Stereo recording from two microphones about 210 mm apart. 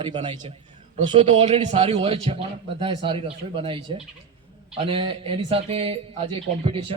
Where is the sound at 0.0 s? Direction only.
20° right (ahead or behind).